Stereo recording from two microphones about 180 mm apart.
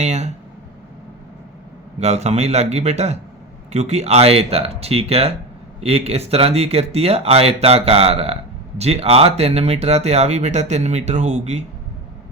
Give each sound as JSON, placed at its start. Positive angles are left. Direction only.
{"t": 0.0, "sound": "speech", "side_deg": -40}
{"t": 2.0, "sound": "speech", "side_deg": -40}